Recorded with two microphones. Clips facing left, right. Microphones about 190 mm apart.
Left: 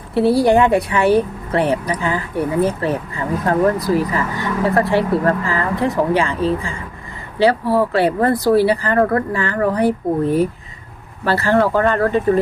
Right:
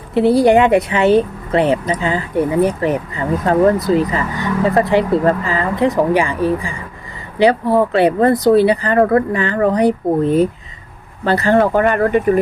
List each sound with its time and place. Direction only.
0.1 s speech: 20° right (ahead or behind)